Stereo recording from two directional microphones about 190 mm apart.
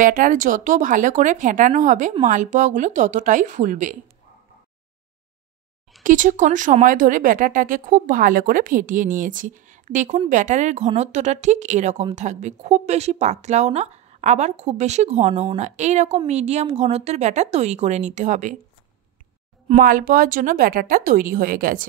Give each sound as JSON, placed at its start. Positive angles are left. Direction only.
{"t": 0.0, "sound": "speech", "side_deg": -45}
{"t": 6.0, "sound": "speech", "side_deg": -45}
{"t": 19.8, "sound": "speech", "side_deg": -45}